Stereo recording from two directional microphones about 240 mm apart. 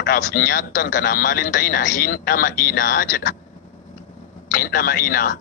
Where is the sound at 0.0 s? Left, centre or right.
Left.